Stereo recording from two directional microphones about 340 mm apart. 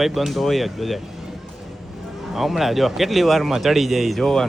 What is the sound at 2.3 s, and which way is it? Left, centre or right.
A man's voice, centre.